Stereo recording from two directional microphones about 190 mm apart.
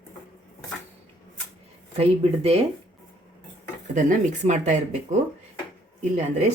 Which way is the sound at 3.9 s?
40° right (ahead or behind).